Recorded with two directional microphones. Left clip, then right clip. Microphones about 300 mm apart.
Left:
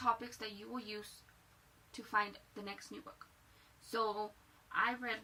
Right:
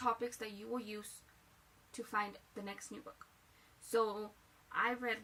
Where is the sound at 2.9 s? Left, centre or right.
Centre.